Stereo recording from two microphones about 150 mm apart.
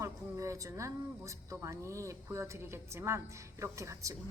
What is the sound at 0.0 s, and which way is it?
A woman's voice, 20° right (ahead or behind).